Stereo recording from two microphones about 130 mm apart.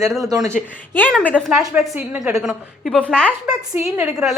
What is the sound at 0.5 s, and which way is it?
A woman's voice, 10° left (ahead or behind).